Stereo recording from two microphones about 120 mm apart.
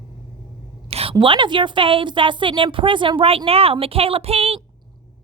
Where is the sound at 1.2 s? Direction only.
45° right (ahead or behind).